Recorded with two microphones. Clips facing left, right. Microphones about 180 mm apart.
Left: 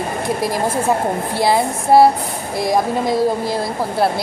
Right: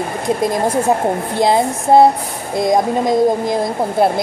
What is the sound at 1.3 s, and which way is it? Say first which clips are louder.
Speech: right 2 dB; 20° right (ahead or behind).